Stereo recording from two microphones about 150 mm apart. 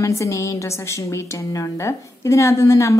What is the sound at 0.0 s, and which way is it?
A woman's voice, 20° left (ahead or behind).